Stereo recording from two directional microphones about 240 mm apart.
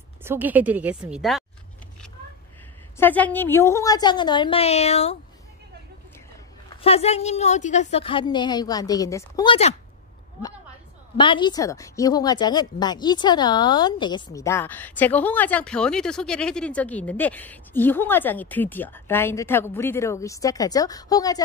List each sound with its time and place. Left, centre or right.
0.2 s a woman's voice: centre
3.0 s a woman's voice: centre; by 5.1 s left
6.7 s a woman's voice: left
11.1 s a woman's voice: centre